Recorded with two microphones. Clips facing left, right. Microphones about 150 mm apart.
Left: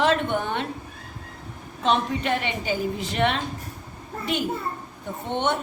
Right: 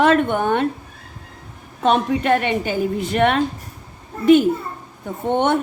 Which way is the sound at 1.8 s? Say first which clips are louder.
Right 6 dB; 50° right (ahead or behind).